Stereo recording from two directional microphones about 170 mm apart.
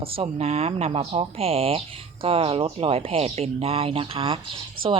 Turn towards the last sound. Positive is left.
turn(degrees=-30)  # may be behind; listen again after turning